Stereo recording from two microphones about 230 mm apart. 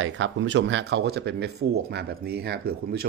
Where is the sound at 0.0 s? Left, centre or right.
Right.